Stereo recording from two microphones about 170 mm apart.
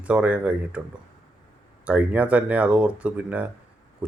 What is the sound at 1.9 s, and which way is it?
Speech, 10° right (ahead or behind).